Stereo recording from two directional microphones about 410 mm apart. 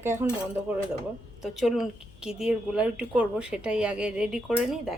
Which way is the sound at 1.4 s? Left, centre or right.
Centre.